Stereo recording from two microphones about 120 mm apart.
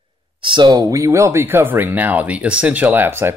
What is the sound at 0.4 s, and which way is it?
Speech, 40° right (ahead or behind).